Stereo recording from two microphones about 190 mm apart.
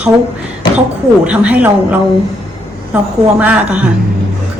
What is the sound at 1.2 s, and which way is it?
A woman's voice, 5° right (ahead or behind).